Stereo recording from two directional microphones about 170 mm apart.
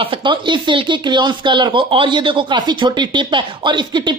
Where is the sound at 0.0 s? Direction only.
30° right (ahead or behind).